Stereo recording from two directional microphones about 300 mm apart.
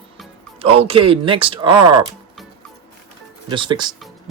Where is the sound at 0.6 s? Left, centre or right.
Centre.